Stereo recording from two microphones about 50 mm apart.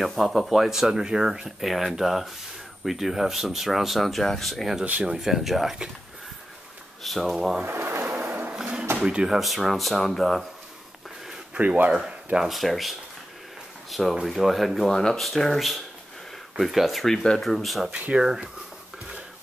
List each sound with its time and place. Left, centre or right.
0.0 s speech: centre
7.0 s speech: centre
7.6 s a sound: right
8.2 s a sound: right
9.0 s speech: centre
9.4 s speech: centre
11.5 s speech: right
11.9 s speech: centre
12.4 s speech: centre
18.1 s speech: centre